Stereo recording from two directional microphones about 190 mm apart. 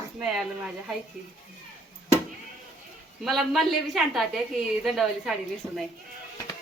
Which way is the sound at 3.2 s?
Centre (ahead or behind).